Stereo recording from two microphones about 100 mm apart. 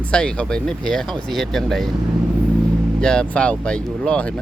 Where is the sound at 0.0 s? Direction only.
10° left (ahead or behind).